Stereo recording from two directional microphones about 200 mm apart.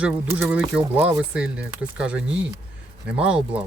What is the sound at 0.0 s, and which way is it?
Speech, 10° right (ahead or behind).